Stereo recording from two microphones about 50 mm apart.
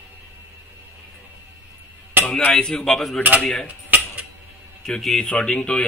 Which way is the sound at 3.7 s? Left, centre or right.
Right.